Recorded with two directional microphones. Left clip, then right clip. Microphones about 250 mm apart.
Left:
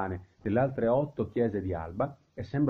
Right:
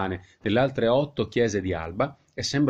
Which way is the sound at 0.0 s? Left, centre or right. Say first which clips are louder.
Right 5 dB; right.